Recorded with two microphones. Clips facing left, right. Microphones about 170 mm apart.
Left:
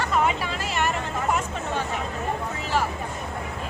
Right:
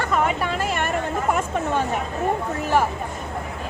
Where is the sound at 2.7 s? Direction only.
55° right (ahead or behind).